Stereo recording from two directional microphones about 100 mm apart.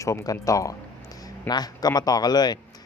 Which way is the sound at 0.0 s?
30° left (ahead or behind).